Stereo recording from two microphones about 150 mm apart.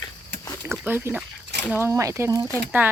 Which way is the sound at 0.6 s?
15° right (ahead or behind).